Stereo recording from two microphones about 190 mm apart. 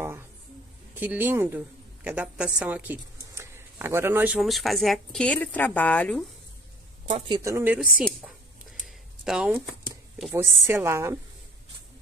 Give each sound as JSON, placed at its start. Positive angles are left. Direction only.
{"t": 0.9, "sound": "speech", "side_deg": -10}
{"t": 7.2, "sound": "speech", "side_deg": -20}
{"t": 8.8, "sound": "shuffling cards", "side_deg": 0}
{"t": 10.7, "sound": "speech", "side_deg": -15}